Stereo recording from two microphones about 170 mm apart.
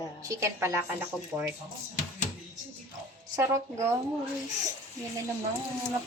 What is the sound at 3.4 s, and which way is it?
Speech, 15° right (ahead or behind).